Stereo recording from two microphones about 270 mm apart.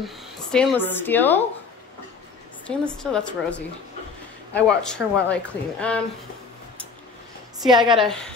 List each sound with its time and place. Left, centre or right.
0.0 s speech: centre
2.6 s speech: centre
7.6 s a woman's voice: centre
8.1 s speech: centre